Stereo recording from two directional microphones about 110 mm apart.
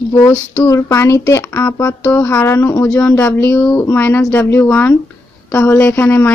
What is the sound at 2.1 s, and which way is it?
A woman's voice, 15° left (ahead or behind).